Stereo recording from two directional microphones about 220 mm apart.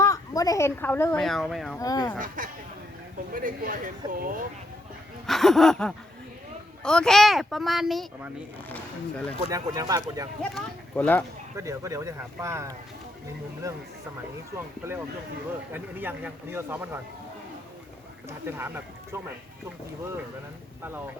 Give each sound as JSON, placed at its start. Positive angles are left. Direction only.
{"t": 0.0, "sound": "a woman's voice", "side_deg": 15}
{"t": 1.8, "sound": "speech", "side_deg": 15}
{"t": 2.1, "sound": "speech", "side_deg": -40}
{"t": 5.2, "sound": "a sound", "side_deg": 0}
{"t": 6.8, "sound": "speech", "side_deg": 5}
{"t": 9.4, "sound": "a man's voice", "side_deg": -15}
{"t": 10.5, "sound": "speech", "side_deg": 5}
{"t": 11.5, "sound": "a man's voice", "side_deg": -15}
{"t": 14.5, "sound": "a man's voice", "side_deg": -10}
{"t": 18.3, "sound": "a man's voice", "side_deg": -10}